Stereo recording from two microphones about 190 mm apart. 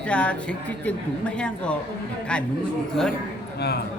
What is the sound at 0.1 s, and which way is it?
A woman's voice, 5° left (ahead or behind).